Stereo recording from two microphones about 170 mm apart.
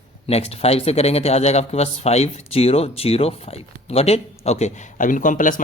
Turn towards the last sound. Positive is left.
turn(degrees=50)  # may be behind; listen again after turning